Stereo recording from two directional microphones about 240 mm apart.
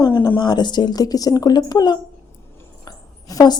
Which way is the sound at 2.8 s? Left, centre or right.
Centre.